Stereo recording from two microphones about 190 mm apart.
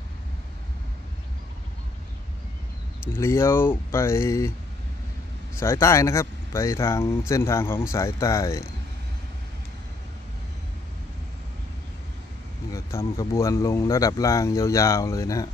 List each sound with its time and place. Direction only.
3.1 s speech: 15° left (ahead or behind)
5.6 s speech: 15° left (ahead or behind)
12.7 s speech: 15° left (ahead or behind)